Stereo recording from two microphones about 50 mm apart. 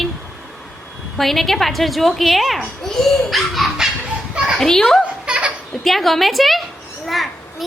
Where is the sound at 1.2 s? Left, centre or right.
Centre.